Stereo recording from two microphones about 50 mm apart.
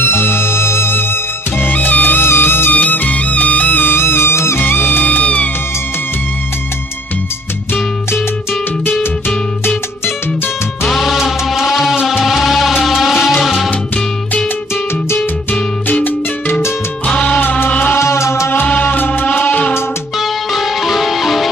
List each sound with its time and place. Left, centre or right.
0.0 s music: left
1.6 s music: left
2.2 s music: left
2.7 s music: left
3.9 s music: left
4.6 s music: left
10.8 s music: centre
15.1 s music: left
17.6 s music: left
17.9 s music: left
18.7 s music: left
20.2 s music: centre